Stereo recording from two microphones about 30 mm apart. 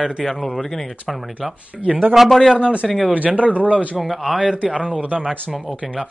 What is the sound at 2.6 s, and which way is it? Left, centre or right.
Speech, right.